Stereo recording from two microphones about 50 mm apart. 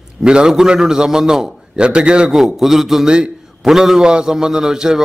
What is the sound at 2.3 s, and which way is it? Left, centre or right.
A man's voice, centre.